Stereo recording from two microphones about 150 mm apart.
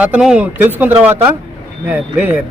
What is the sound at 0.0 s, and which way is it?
A man's voice, 5° right (ahead or behind).